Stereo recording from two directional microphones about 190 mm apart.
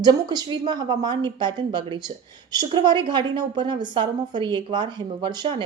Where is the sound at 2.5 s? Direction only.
20° right (ahead or behind).